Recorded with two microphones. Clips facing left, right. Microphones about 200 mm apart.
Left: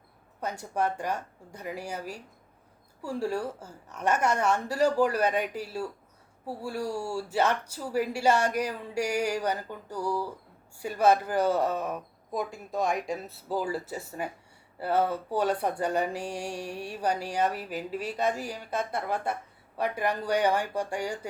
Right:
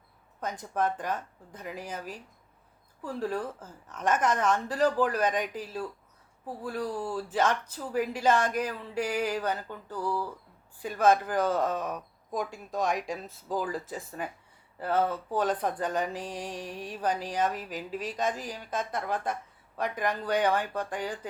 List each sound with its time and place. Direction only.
0.3 s speech: 10° left (ahead or behind)